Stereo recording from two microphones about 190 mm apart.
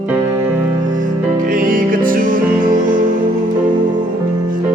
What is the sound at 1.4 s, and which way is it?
Music, 45° right (ahead or behind).